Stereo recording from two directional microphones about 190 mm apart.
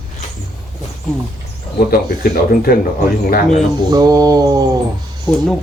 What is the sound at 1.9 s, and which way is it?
Speech, 50° left (ahead or behind).